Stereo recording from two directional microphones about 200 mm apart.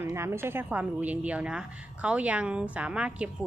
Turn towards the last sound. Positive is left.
turn(degrees=-5)  # may be behind; listen again after turning